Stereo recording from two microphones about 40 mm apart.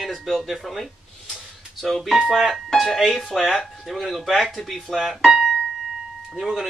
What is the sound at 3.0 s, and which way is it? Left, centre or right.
Speech, centre.